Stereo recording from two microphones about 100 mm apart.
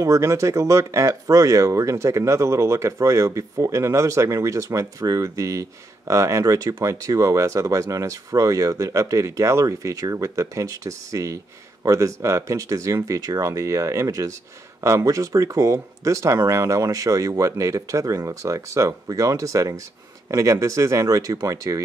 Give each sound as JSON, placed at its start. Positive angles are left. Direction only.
{"t": 0.0, "sound": "speech", "side_deg": -30}